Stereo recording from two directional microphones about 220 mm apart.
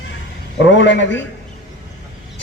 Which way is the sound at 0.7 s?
55° left (ahead or behind).